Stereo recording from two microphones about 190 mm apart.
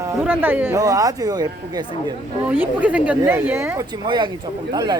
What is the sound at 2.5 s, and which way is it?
Speech, 10° right (ahead or behind).